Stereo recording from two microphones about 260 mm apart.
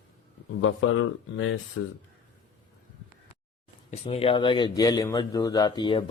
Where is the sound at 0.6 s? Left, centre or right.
Left.